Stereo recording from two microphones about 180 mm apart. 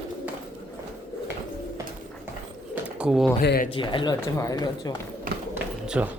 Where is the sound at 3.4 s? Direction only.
55° left (ahead or behind).